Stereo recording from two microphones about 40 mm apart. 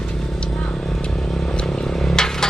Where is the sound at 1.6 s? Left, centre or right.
Centre.